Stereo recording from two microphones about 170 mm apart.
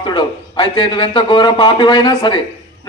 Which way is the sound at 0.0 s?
30° left (ahead or behind).